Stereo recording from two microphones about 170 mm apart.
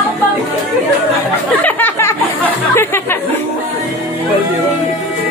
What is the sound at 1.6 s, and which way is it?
Music, 10° left (ahead or behind).